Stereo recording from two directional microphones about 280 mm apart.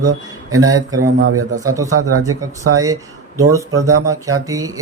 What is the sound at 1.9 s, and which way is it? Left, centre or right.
Speech, right.